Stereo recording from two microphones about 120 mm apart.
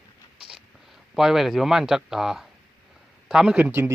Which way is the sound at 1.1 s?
Centre (ahead or behind).